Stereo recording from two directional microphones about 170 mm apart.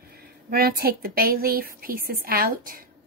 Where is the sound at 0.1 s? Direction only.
65° right (ahead or behind).